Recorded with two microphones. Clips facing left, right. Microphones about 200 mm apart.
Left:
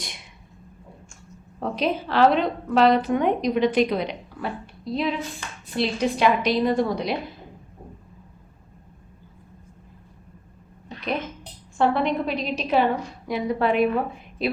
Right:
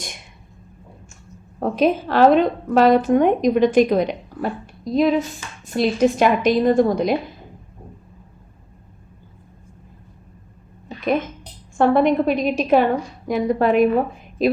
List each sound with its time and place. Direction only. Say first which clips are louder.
1.5 s a woman's voice: right 7 dB; 50° right (ahead or behind)
11.8 s a woman's voice: right 6 dB; 50° right (ahead or behind)